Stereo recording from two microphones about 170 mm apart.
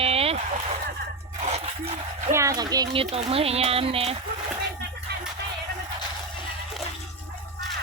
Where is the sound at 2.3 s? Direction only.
20° right (ahead or behind).